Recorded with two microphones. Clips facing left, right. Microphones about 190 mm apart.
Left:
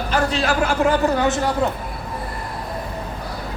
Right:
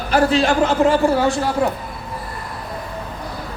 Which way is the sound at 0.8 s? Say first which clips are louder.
Right 2 dB; 10° right (ahead or behind).